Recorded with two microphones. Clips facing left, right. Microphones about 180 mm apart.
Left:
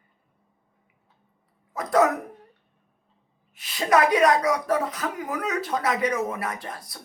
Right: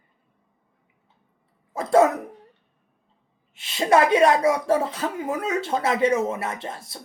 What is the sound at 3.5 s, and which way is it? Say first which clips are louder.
Speech: right 3 dB; 25° right (ahead or behind).